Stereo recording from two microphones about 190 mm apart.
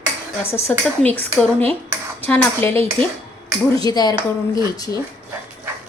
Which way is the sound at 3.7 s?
20° left (ahead or behind).